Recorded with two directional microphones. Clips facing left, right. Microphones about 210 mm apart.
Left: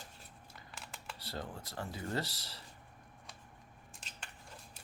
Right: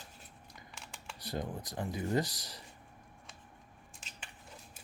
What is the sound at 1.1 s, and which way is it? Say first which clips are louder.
Speech: right 6 dB; 15° right (ahead or behind).